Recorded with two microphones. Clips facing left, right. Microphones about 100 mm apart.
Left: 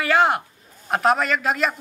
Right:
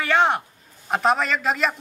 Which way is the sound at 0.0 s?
Centre (ahead or behind).